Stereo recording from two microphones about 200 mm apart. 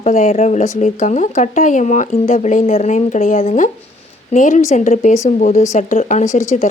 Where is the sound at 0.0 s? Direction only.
35° left (ahead or behind).